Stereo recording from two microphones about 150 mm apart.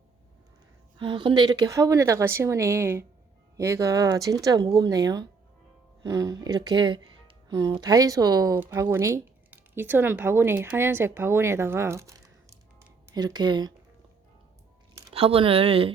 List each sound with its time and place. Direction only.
0.9 s speech: 30° right (ahead or behind)
15.1 s speech: 40° right (ahead or behind)